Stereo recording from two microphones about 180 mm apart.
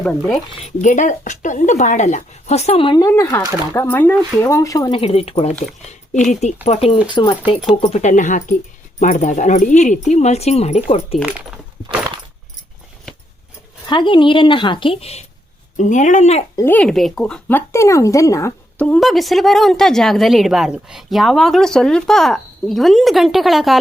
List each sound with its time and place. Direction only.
0.5 s speech: 40° left (ahead or behind); by 4.9 s 20° left (ahead or behind)
4.9 s speech: 35° left (ahead or behind)
7.1 s a woman's voice: 25° left (ahead or behind)
7.4 s speech: 5° right (ahead or behind)
7.8 s speech: 35° left (ahead or behind)
11.2 s speech: 5° right (ahead or behind)
11.9 s keys jangling: 25° right (ahead or behind)
13.8 s a woman's voice: 25° left (ahead or behind)
15.8 s speech: 45° left (ahead or behind)
16.6 s speech: 10° left (ahead or behind)